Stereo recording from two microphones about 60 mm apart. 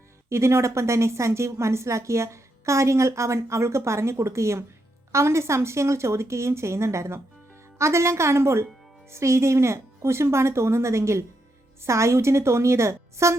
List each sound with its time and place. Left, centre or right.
0.3 s a woman's voice: right